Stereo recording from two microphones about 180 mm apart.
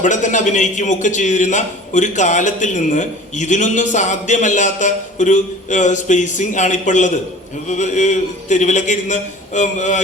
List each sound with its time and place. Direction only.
0.0 s a man's voice: 45° left (ahead or behind)